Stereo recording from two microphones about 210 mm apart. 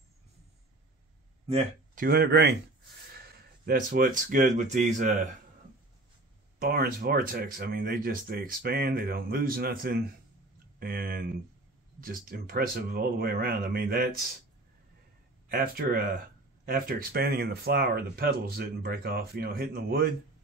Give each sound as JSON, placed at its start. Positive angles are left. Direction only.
{"t": 2.0, "sound": "speech", "side_deg": -45}
{"t": 3.6, "sound": "speech", "side_deg": -40}
{"t": 6.6, "sound": "speech", "side_deg": -45}
{"t": 15.4, "sound": "speech", "side_deg": -45}